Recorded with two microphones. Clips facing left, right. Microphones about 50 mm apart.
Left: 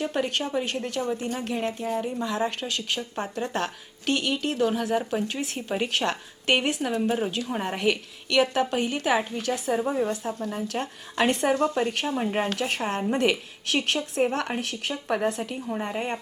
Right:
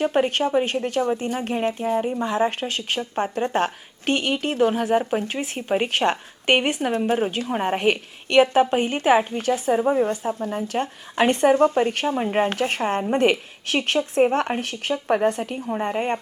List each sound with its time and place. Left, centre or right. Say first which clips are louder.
0.0 s speech: right 7 dB; right
14.6 s speech: right 5 dB; right
15.0 s speech: right 6 dB; centre
15.3 s speech: right 4 dB; right